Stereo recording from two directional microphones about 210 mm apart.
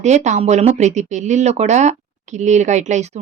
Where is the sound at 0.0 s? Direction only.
35° right (ahead or behind).